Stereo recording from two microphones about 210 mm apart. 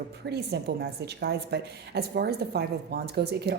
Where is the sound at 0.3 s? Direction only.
50° right (ahead or behind).